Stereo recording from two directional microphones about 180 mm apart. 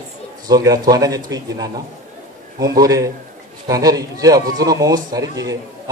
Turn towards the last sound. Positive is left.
turn(degrees=-20)  # may be behind; listen again after turning